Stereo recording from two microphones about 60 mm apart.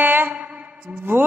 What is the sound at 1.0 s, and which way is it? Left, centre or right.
Speech, right.